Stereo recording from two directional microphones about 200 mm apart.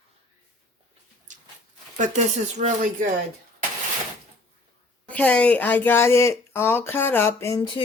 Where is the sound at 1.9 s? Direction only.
35° right (ahead or behind).